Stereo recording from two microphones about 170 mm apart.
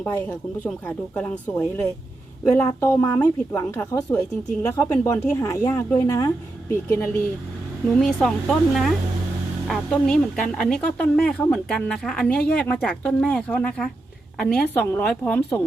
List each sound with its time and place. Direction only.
0.0 s speech: 10° left (ahead or behind)
7.9 s a woman's voice: 5° left (ahead or behind)